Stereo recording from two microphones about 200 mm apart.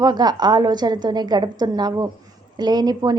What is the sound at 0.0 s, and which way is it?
A woman's voice, 20° right (ahead or behind).